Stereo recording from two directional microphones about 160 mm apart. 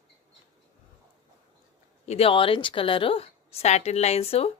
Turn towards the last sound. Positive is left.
turn(degrees=40)  # may be behind; listen again after turning